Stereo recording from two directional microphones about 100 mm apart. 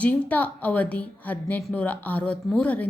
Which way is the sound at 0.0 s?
15° left (ahead or behind).